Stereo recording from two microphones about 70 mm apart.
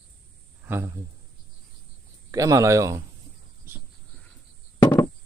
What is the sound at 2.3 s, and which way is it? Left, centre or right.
Speech, right.